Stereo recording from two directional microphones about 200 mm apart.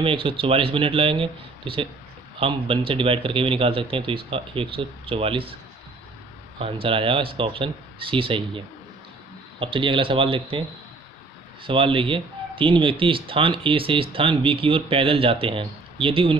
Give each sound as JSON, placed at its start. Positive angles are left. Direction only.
{"t": 0.0, "sound": "speech", "side_deg": -25}
{"t": 6.6, "sound": "speech", "side_deg": -25}
{"t": 11.6, "sound": "speech", "side_deg": -25}